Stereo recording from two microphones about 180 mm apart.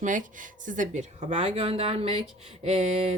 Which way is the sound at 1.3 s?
30° right (ahead or behind).